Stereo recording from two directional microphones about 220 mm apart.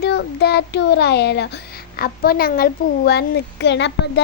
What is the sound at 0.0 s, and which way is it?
A woman's voice, 50° left (ahead or behind).